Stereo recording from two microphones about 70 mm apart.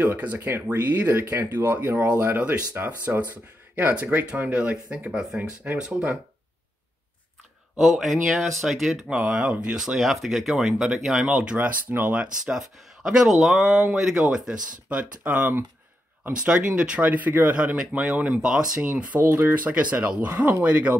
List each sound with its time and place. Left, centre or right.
0.0 s speech: right
7.8 s speech: centre
11.3 s speech: centre
12.2 s speech: centre
15.0 s speech: right
16.3 s speech: centre
17.0 s speech: right
19.1 s speech: right